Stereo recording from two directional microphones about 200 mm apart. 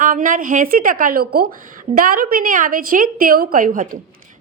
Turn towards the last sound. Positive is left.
turn(degrees=-45)  # may be behind; listen again after turning